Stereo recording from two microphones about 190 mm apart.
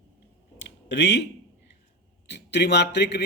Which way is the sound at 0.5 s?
70° left (ahead or behind).